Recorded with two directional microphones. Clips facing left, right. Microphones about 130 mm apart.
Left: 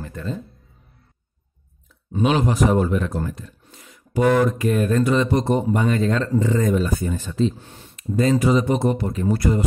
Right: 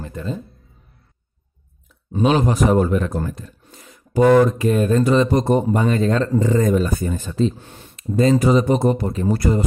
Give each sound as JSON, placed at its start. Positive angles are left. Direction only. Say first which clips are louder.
{"t": 0.0, "sound": "a sound", "louder": "right 2 dB", "side_deg": -20}
{"t": 2.1, "sound": "a man's voice", "louder": "right 2 dB", "side_deg": -35}
{"t": 7.6, "sound": "speech", "louder": "right 2 dB", "side_deg": -65}
{"t": 8.4, "sound": "a man's voice", "louder": "right 3 dB", "side_deg": -40}